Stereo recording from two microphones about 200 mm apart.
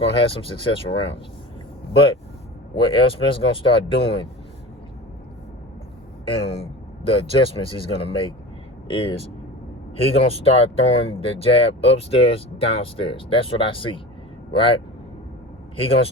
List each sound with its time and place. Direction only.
0.0 s speech: 25° left (ahead or behind)
6.2 s speech: 25° left (ahead or behind)